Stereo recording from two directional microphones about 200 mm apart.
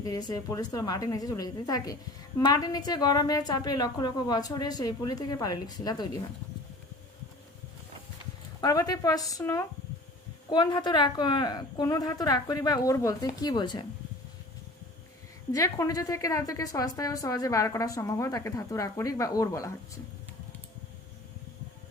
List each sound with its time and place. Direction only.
0.0 s a woman's voice: 20° left (ahead or behind)
8.6 s a woman's voice: 20° left (ahead or behind)
15.5 s a woman's voice: 15° left (ahead or behind)